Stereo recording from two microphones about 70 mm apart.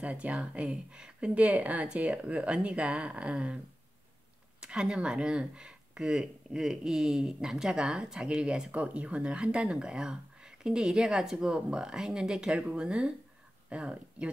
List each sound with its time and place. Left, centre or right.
0.0 s speech: centre